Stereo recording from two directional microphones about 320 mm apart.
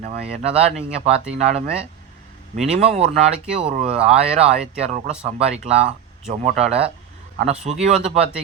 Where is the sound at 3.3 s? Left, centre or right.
Centre.